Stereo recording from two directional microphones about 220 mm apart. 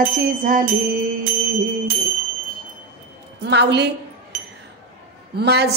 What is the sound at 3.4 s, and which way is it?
Chink, 50° right (ahead or behind).